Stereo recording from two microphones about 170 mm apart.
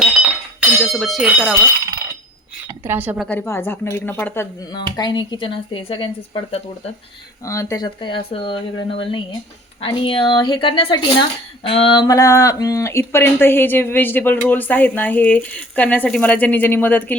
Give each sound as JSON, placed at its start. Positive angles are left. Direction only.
{"t": 0.8, "sound": "speech", "side_deg": 0}
{"t": 2.6, "sound": "a woman's voice", "side_deg": -15}
{"t": 3.2, "sound": "speech", "side_deg": 10}
{"t": 4.7, "sound": "speech", "side_deg": 25}
{"t": 7.4, "sound": "speech", "side_deg": 15}